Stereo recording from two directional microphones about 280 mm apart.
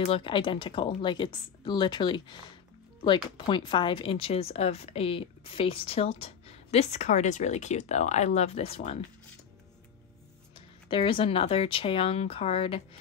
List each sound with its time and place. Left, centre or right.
0.0 s a woman's voice: centre
10.9 s a woman's voice: centre